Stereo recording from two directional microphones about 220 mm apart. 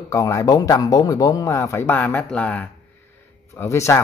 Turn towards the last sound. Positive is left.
turn(degrees=10)  # may be behind; listen again after turning